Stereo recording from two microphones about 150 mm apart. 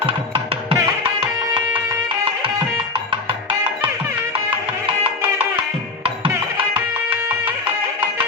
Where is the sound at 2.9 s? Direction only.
35° right (ahead or behind).